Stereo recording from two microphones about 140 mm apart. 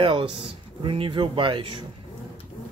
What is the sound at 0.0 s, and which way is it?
Speech, 40° right (ahead or behind).